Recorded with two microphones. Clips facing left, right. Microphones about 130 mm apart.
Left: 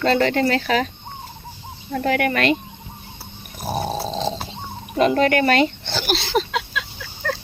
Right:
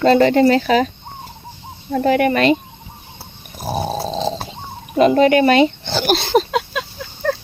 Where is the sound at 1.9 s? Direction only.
25° right (ahead or behind).